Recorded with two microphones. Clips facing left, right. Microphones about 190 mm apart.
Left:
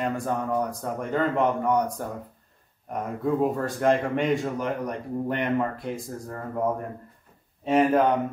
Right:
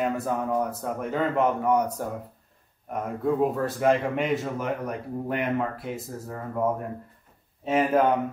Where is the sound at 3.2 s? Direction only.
Centre (ahead or behind).